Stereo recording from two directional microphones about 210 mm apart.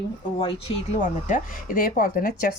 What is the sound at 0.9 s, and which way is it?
Speech, 35° left (ahead or behind).